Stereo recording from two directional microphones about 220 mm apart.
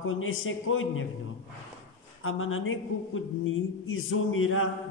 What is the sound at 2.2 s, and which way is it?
Speech, 65° left (ahead or behind).